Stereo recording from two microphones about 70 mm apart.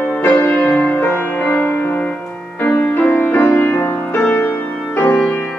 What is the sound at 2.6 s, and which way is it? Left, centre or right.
Music, left.